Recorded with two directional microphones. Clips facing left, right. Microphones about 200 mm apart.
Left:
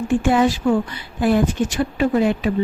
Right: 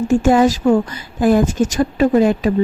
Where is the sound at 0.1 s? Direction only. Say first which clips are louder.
Right 4 dB; 45° right (ahead or behind).